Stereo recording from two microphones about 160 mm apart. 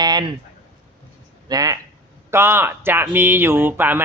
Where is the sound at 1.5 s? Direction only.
25° right (ahead or behind).